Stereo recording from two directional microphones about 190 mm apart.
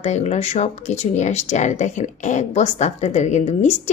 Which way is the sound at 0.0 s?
35° left (ahead or behind).